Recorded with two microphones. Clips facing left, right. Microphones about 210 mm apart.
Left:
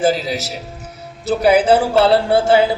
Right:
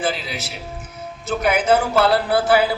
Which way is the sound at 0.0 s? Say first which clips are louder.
Left 8 dB; 40° left (ahead or behind).